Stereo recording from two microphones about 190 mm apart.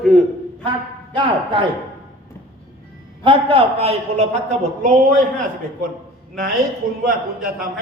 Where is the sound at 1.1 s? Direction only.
25° right (ahead or behind).